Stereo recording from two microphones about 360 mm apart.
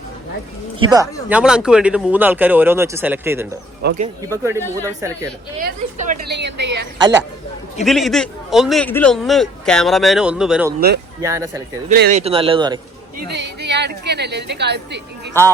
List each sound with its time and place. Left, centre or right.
0.8 s a man's voice: centre
3.8 s a woman's voice: centre
4.3 s a man's voice: centre
5.5 s a woman's voice: right
7.9 s a man's voice: centre
10.8 s a woman's voice: right
11.2 s a man's voice: centre
13.1 s a woman's voice: right
15.3 s a man's voice: centre